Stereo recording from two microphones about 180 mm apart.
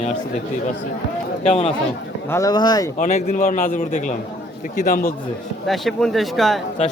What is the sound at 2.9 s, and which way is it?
A man's voice, 40° left (ahead or behind).